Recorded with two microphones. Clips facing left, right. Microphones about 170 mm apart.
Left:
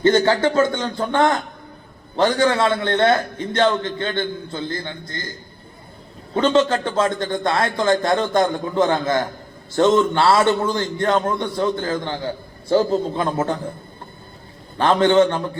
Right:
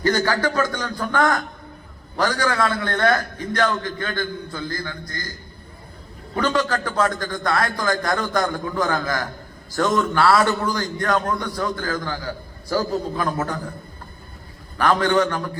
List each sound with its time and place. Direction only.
0.0 s a man's voice: 25° left (ahead or behind)
6.3 s a man's voice: 25° left (ahead or behind)
14.8 s a man's voice: 25° left (ahead or behind)